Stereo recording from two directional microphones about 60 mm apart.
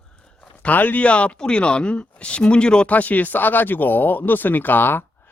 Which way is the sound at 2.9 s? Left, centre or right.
Left.